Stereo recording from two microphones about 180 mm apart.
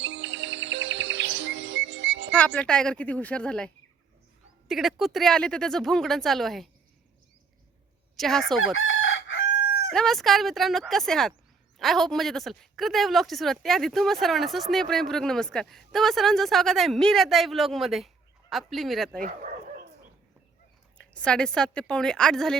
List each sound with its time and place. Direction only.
0.0 s music: 90° right
2.3 s a woman's voice: 5° left (ahead or behind)
4.7 s speech: centre (ahead or behind)
8.1 s speech: centre (ahead or behind)
8.8 s chicken: 90° left
9.9 s speech: centre (ahead or behind)
19.2 s dog: 50° right (ahead or behind)
21.0 s speech: 5° left (ahead or behind)